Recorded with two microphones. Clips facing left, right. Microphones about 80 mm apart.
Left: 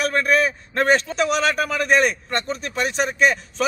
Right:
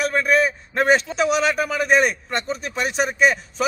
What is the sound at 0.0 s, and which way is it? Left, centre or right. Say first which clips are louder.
A man's voice: even; centre.